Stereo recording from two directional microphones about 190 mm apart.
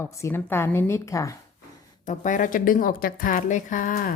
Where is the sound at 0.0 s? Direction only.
15° left (ahead or behind).